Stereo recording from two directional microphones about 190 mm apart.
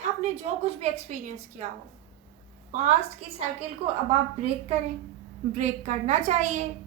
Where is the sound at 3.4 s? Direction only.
35° right (ahead or behind).